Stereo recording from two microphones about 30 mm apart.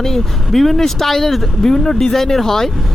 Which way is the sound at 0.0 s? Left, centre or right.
Centre.